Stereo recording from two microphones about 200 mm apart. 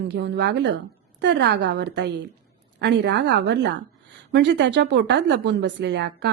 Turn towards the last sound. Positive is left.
turn(degrees=-55)  # may be behind; listen again after turning